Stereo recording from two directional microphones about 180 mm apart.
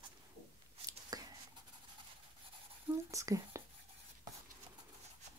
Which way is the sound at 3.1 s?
15° right (ahead or behind).